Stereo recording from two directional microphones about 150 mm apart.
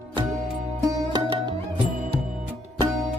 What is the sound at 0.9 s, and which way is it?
Music, 25° right (ahead or behind).